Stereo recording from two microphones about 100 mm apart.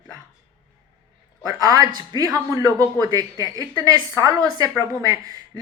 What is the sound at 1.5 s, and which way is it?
Speech, 35° right (ahead or behind).